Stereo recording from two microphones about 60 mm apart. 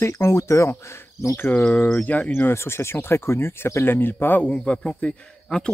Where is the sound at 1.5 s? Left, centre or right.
Left.